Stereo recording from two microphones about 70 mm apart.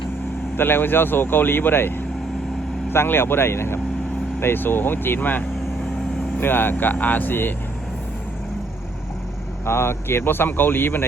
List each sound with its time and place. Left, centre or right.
0.5 s speech: left
2.9 s speech: left
9.6 s speech: left